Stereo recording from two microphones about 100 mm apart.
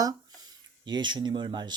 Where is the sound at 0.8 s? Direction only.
50° right (ahead or behind).